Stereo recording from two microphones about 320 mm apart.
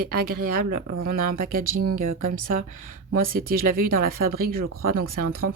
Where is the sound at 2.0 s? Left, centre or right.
Right.